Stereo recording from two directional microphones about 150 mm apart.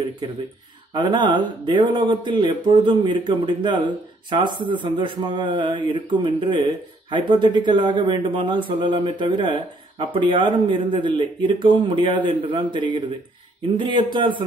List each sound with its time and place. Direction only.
0.9 s speech: 30° right (ahead or behind)